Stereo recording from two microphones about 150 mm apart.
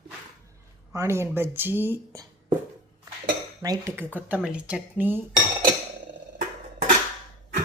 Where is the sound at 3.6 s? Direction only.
20° right (ahead or behind).